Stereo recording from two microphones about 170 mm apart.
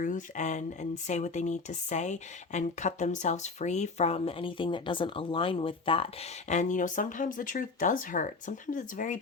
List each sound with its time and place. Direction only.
0.0 s speech: 45° left (ahead or behind)
6.5 s speech: 45° left (ahead or behind)